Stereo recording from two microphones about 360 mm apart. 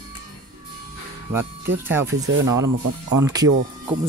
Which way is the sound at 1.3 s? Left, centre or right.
Centre.